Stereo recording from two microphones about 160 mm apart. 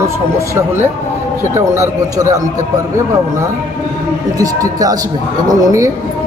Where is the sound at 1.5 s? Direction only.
20° right (ahead or behind).